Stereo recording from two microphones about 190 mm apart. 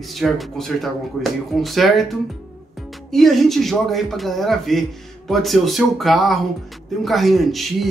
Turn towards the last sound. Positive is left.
turn(degrees=0)  # may be behind; listen again after turning